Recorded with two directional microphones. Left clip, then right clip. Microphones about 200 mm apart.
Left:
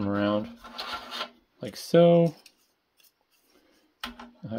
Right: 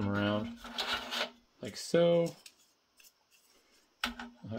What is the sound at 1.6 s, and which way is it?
Speech, 50° left (ahead or behind).